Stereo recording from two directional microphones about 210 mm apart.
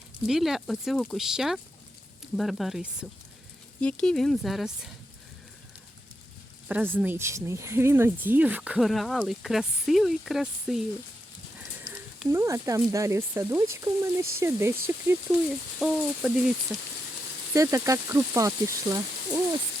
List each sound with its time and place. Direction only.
0.2 s speech: centre (ahead or behind)
6.7 s speech: 10° right (ahead or behind)
12.3 s speech: 15° right (ahead or behind)
15.4 s speech: centre (ahead or behind)
17.5 s speech: 15° right (ahead or behind)